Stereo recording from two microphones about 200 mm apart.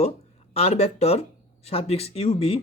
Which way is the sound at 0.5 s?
30° left (ahead or behind).